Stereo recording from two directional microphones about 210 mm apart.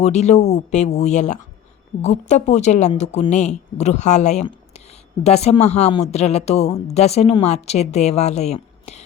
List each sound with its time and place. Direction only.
0.0 s a woman's voice: 30° left (ahead or behind)